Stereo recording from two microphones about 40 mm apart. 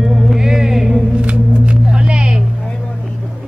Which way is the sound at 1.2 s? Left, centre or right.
Right.